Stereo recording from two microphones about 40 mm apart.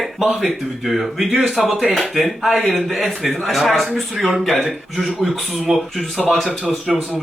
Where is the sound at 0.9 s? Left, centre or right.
Centre.